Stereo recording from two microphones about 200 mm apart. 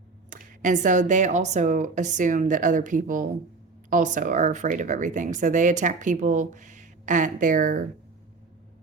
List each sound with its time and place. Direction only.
0.3 s speech: 40° right (ahead or behind)